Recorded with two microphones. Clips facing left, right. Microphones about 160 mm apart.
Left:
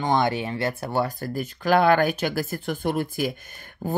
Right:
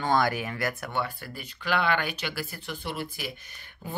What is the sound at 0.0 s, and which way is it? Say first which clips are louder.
Speech: left 3 dB; 20° left (ahead or behind).